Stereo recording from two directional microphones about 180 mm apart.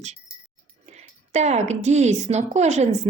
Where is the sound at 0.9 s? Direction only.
40° right (ahead or behind).